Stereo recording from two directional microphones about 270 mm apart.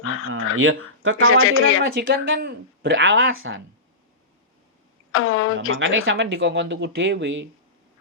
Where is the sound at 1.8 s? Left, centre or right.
Right.